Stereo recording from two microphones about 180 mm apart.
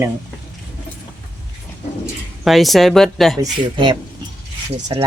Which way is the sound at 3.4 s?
25° right (ahead or behind).